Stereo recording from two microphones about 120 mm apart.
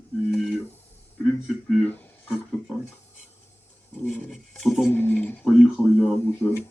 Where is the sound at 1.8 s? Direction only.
15° left (ahead or behind).